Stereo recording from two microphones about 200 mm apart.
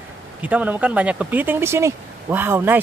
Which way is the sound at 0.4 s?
5° right (ahead or behind).